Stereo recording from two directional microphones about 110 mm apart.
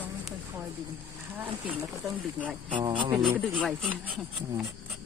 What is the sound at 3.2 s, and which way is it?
Speech, 5° left (ahead or behind).